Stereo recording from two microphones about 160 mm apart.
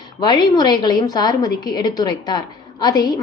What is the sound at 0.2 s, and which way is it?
A woman's voice, 25° left (ahead or behind).